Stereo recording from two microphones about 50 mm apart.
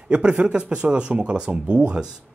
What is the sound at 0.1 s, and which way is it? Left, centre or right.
Speech, right.